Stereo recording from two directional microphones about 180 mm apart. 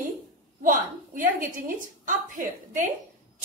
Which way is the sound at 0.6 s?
45° right (ahead or behind).